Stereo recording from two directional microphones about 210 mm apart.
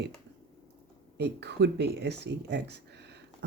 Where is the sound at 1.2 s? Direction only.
55° right (ahead or behind).